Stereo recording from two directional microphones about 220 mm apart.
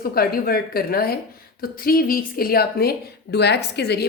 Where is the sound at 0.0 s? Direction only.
45° left (ahead or behind).